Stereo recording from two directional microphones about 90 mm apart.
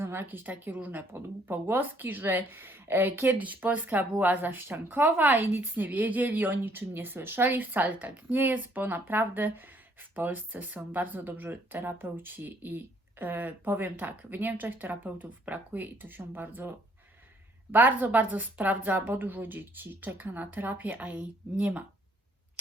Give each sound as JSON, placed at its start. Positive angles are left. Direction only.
{"t": 0.0, "sound": "speech", "side_deg": -25}